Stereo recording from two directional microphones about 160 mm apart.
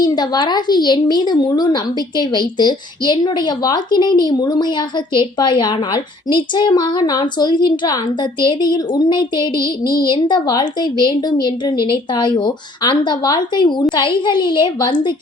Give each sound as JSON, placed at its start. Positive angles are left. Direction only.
{"t": 0.0, "sound": "a woman's voice", "side_deg": 25}